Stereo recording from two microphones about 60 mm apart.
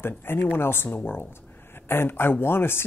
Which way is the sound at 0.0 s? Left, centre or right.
Left.